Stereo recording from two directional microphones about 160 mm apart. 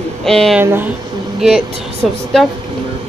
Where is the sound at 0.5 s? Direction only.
10° right (ahead or behind).